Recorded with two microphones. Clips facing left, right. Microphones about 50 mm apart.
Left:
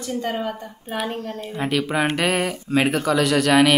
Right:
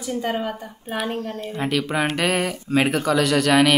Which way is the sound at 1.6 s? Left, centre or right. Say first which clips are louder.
Left 1 dB; centre.